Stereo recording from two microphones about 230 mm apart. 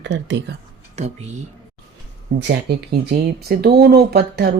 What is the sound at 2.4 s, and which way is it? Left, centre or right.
Speech, right.